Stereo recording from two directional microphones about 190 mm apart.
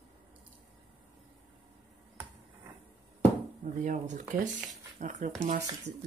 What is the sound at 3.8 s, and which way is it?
Speech, 40° right (ahead or behind).